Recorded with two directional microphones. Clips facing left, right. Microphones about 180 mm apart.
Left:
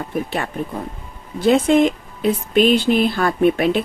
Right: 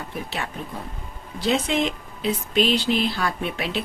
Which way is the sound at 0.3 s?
50° left (ahead or behind).